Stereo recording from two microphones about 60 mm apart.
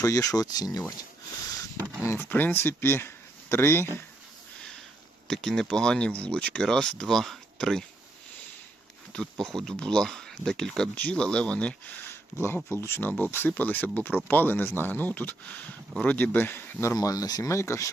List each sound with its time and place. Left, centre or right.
0.0 s speech: left
2.1 s speech: left
5.3 s speech: centre
9.2 s speech: centre
10.9 s speech: left
12.0 s a sound: left
12.6 s speech: left
13.1 s speech: left
16.9 s speech: left
17.5 s speech: left